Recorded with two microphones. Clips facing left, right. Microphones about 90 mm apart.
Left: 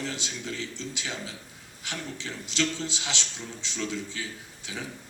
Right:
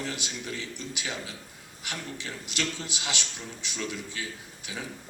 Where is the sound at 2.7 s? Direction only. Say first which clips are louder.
Left 2 dB; 15° right (ahead or behind).